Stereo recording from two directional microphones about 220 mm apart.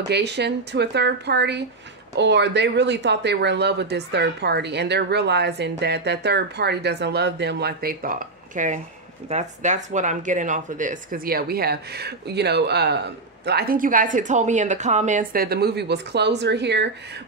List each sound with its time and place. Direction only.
0.1 s speech: 50° right (ahead or behind)